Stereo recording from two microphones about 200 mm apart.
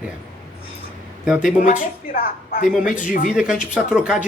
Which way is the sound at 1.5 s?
40° left (ahead or behind).